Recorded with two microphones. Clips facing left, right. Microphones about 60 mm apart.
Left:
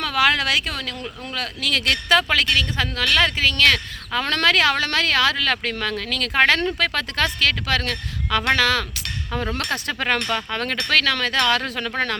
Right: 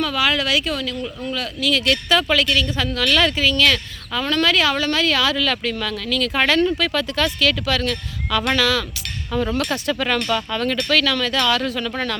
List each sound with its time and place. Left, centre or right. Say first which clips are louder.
0.0 s speech: left 1 dB; left
9.6 s speech: right 3 dB; left
9.9 s speech: right 2 dB; left